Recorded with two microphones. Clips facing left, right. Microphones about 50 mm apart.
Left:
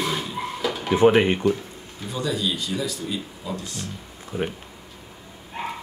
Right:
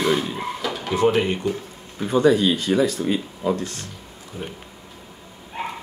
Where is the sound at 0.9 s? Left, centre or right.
Left.